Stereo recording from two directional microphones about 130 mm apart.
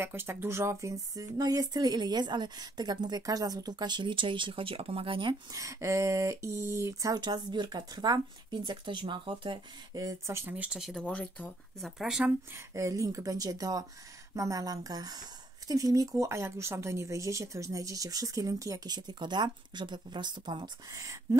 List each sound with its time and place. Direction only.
0.0 s speech: 15° right (ahead or behind); by 5.3 s 40° right (ahead or behind)
5.5 s speech: 25° right (ahead or behind)
10.0 s speech: 20° right (ahead or behind)
10.5 s speech: 10° right (ahead or behind)
11.1 s speech: 10° left (ahead or behind)
11.8 s speech: 5° right (ahead or behind)
12.5 s speech: 25° right (ahead or behind)